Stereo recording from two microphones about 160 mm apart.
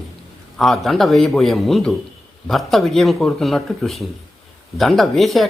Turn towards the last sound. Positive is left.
turn(degrees=0)  # may be behind; listen again after turning